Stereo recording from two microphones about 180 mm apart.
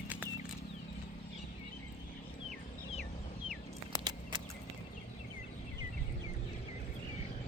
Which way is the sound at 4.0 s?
25° right (ahead or behind).